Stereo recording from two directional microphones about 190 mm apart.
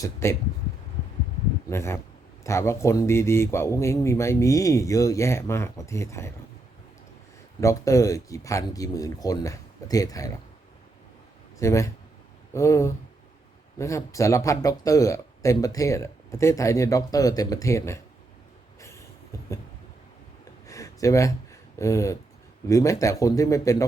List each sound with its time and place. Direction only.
0.0 s speech: 15° left (ahead or behind)
1.7 s speech: 15° left (ahead or behind)
7.6 s speech: 15° left (ahead or behind)
11.6 s speech: 15° left (ahead or behind)
20.7 s a sound: 15° left (ahead or behind)
21.8 s speech: 15° left (ahead or behind)